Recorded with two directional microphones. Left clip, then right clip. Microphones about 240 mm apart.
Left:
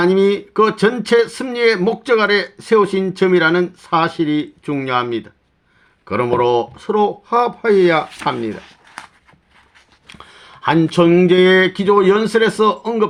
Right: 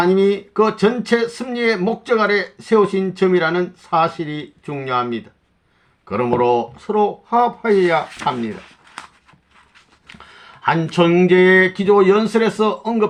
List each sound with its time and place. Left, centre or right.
0.0 s speech: left
10.4 s speech: left